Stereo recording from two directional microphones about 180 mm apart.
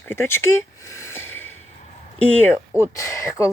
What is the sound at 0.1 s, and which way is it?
Speech, 15° left (ahead or behind).